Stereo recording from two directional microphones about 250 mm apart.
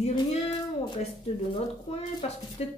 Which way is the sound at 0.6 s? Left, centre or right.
Centre.